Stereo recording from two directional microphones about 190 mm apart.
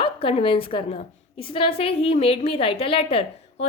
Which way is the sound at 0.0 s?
30° left (ahead or behind).